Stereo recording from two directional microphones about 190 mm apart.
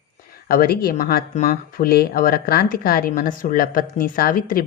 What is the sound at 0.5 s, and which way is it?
Speech, 50° left (ahead or behind).